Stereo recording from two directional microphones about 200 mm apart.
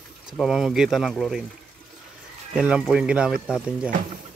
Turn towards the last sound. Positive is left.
turn(degrees=-5)  # may be behind; listen again after turning